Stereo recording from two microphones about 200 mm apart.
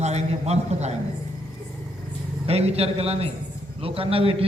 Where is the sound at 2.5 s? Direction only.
30° right (ahead or behind).